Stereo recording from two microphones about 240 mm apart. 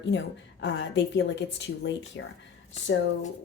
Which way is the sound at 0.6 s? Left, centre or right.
Left.